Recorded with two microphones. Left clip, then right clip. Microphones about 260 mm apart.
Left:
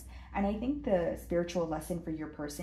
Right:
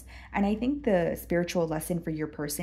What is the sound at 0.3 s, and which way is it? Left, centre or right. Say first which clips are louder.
A woman's voice: right 5 dB; right.